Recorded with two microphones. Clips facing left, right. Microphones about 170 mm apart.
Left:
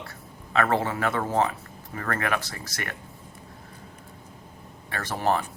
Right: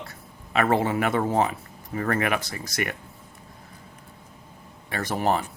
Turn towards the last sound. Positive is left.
turn(degrees=-15)  # may be behind; listen again after turning